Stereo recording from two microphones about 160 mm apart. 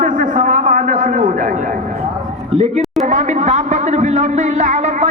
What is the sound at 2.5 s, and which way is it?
Speech, 40° right (ahead or behind).